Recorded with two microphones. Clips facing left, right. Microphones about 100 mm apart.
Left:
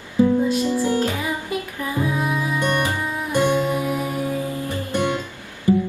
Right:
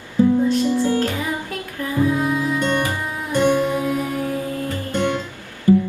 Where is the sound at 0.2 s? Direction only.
10° left (ahead or behind).